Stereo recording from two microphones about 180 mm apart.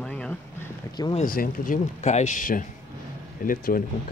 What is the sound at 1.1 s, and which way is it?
Speech, 50° left (ahead or behind).